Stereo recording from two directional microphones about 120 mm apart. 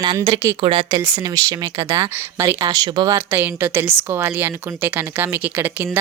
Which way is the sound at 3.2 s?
20° right (ahead or behind).